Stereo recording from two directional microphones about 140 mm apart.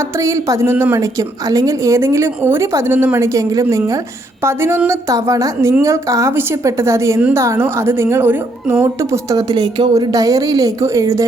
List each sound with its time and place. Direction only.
0.2 s a woman's voice: 20° right (ahead or behind)
9.3 s a woman's voice: 30° right (ahead or behind)